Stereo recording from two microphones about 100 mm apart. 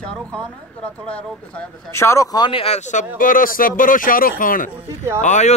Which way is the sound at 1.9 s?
25° left (ahead or behind).